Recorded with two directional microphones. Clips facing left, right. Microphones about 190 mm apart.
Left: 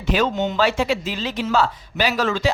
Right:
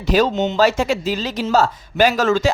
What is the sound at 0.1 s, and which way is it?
Speech, 40° right (ahead or behind).